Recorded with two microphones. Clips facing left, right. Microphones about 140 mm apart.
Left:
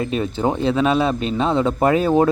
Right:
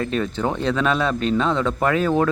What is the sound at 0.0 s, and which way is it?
Speech, 15° left (ahead or behind).